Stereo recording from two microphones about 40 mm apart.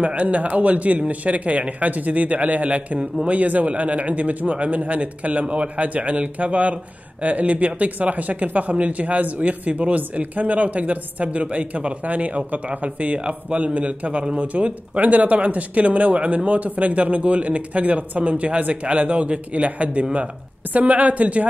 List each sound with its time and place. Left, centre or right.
0.0 s speech: right